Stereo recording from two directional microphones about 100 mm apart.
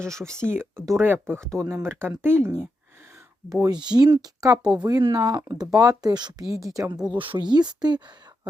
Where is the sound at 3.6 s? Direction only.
45° right (ahead or behind).